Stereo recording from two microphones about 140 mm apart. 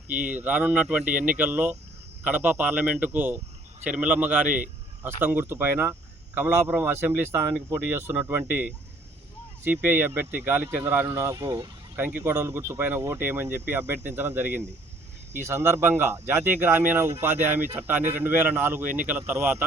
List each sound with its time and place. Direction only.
0.1 s speech: 10° right (ahead or behind); by 11.7 s 30° right (ahead or behind)
11.9 s speech: 15° right (ahead or behind)